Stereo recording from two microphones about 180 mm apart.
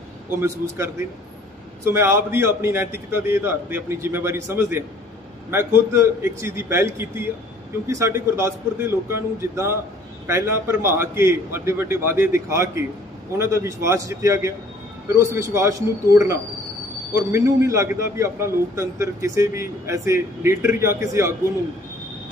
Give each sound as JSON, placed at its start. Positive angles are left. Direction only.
{"t": 0.4, "sound": "a man's voice", "side_deg": -15}